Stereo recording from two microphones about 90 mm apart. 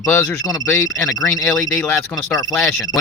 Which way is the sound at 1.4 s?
15° left (ahead or behind).